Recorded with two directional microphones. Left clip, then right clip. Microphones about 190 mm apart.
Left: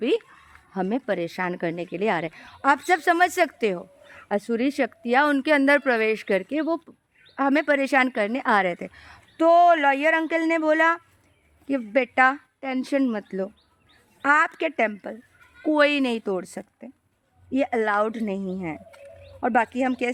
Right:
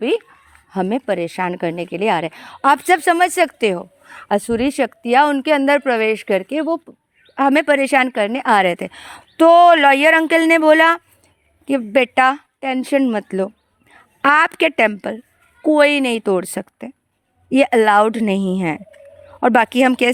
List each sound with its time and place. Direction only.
0.7 s speech: 30° right (ahead or behind)
7.3 s speech: 35° right (ahead or behind)
13.2 s speech: 40° right (ahead or behind)
15.6 s speech: 25° right (ahead or behind); by 20.1 s 45° right (ahead or behind)